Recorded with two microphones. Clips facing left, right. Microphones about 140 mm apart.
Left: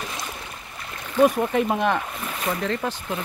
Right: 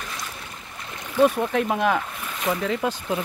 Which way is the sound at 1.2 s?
Centre (ahead or behind).